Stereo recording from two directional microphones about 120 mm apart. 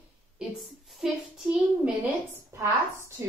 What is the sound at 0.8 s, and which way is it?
Speech, centre (ahead or behind).